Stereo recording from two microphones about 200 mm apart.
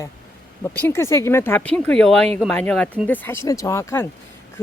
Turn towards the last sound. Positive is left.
turn(degrees=15)  # may be behind; listen again after turning